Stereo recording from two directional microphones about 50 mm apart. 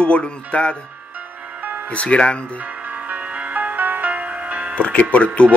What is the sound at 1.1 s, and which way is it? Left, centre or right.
Music, right.